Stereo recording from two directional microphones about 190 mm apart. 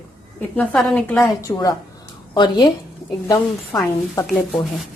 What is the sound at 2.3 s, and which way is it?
Speech, 25° left (ahead or behind).